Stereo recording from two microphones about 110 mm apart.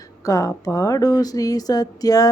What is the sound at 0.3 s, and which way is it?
Speech, 30° left (ahead or behind).